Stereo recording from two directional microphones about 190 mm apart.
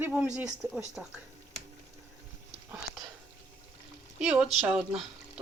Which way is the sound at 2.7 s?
20° right (ahead or behind).